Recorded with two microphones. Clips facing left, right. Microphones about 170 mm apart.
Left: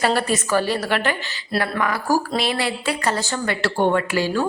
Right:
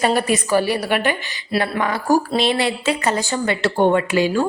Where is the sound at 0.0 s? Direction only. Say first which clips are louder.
Right 2 dB; 15° right (ahead or behind).